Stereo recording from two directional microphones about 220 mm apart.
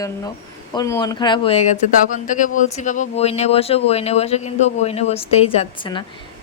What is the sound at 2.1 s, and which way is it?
Speech, 35° left (ahead or behind).